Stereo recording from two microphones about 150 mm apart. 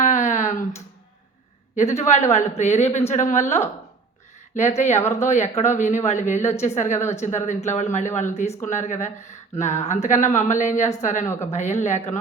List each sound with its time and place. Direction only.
0.0 s finger snapping: 55° left (ahead or behind)
2.0 s speech: 50° left (ahead or behind)
4.9 s speech: 15° left (ahead or behind)
5.2 s speech: 50° left (ahead or behind)
11.3 s speech: 15° left (ahead or behind)
11.8 s speech: 50° left (ahead or behind)